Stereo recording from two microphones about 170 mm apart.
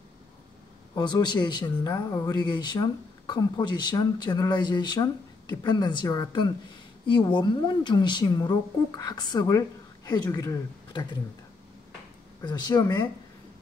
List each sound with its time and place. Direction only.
0.9 s speech: 25° left (ahead or behind)
12.4 s speech: 25° left (ahead or behind)